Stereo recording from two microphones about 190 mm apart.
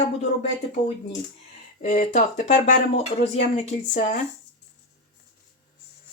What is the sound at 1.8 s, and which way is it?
Speech, 40° left (ahead or behind).